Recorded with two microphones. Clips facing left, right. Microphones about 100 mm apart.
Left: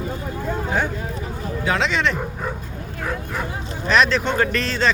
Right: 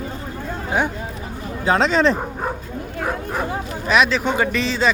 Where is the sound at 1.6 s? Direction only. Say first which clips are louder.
Right 5 dB; 35° right (ahead or behind).